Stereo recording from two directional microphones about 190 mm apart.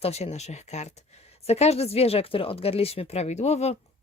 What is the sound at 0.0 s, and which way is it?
Speech, 35° left (ahead or behind).